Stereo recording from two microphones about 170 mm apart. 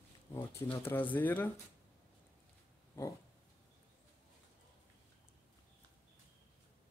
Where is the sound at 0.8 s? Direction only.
10° left (ahead or behind).